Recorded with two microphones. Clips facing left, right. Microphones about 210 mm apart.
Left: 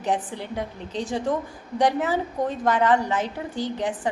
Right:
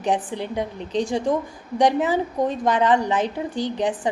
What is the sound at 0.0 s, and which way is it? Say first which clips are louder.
A woman's voice: right 3 dB; 15° right (ahead or behind).